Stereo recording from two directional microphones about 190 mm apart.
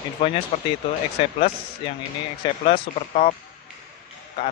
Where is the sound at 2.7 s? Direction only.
30° left (ahead or behind).